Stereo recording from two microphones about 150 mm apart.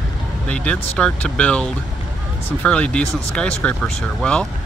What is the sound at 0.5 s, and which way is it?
Speech, 5° left (ahead or behind).